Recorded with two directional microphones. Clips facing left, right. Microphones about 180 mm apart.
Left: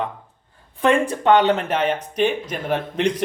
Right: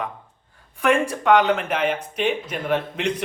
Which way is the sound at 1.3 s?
30° left (ahead or behind).